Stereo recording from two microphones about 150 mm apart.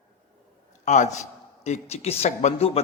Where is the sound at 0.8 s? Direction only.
50° left (ahead or behind).